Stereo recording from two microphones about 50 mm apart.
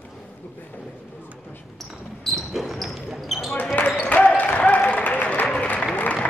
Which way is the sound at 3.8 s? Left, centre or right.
Left.